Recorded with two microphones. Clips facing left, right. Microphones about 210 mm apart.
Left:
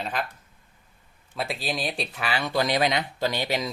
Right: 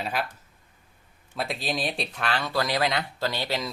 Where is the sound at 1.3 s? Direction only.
Centre (ahead or behind).